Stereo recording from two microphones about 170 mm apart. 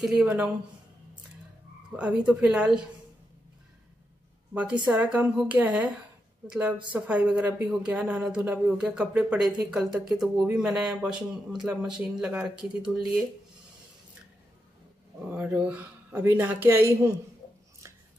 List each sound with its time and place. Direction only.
0.0 s speech: 5° right (ahead or behind)
2.0 s speech: 10° right (ahead or behind)
4.9 s speech: 10° right (ahead or behind)
15.1 s speech: 10° right (ahead or behind)
17.8 s a sound: 20° right (ahead or behind)